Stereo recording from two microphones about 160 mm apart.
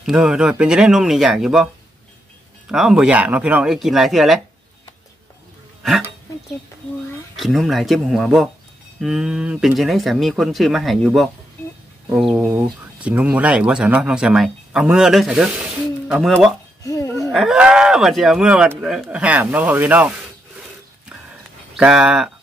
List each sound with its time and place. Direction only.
0.0 s speech: 5° right (ahead or behind)
2.7 s speech: 5° right (ahead or behind)
5.8 s a sound: centre (ahead or behind)
7.3 s speech: centre (ahead or behind)
16.8 s a sound: 20° left (ahead or behind)
17.3 s speech: centre (ahead or behind)
21.7 s speech: 5° right (ahead or behind)